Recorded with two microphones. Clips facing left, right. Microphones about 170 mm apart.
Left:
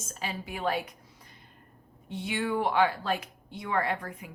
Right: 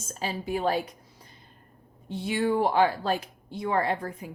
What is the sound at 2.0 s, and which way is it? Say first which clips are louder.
Speech: right 5 dB; 35° right (ahead or behind).